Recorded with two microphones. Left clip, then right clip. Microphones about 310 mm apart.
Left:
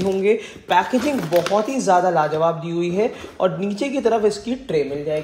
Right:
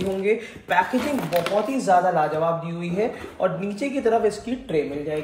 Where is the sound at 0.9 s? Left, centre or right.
Centre.